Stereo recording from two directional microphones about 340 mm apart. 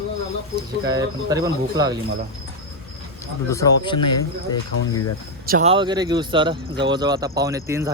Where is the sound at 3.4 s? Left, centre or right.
Centre.